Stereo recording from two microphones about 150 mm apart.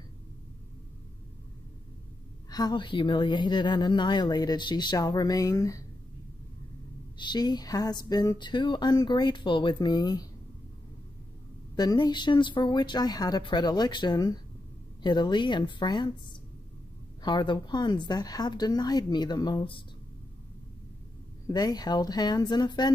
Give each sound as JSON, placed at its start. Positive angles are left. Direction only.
{"t": 2.5, "sound": "speech", "side_deg": 30}
{"t": 7.2, "sound": "speech", "side_deg": 30}
{"t": 11.7, "sound": "speech", "side_deg": 25}
{"t": 21.5, "sound": "speech", "side_deg": 25}